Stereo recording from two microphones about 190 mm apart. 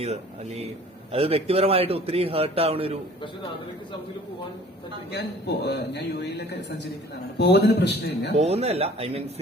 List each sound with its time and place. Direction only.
0.0 s a man's voice: 35° right (ahead or behind)
5.1 s a man's voice: 60° left (ahead or behind)
8.4 s a man's voice: 35° right (ahead or behind)